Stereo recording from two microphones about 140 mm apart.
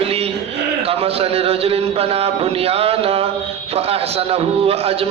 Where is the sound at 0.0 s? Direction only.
45° right (ahead or behind).